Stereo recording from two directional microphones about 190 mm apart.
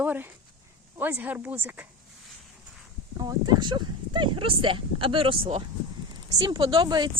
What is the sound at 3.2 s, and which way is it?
Speech, 20° right (ahead or behind).